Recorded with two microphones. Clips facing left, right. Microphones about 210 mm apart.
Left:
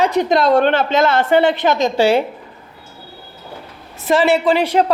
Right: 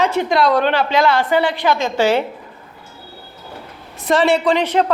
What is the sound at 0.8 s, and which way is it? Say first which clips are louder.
A man's voice: left 1 dB; 25° left (ahead or behind).